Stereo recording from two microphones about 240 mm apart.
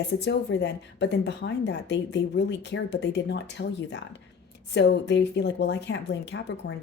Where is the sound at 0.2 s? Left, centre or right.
Left.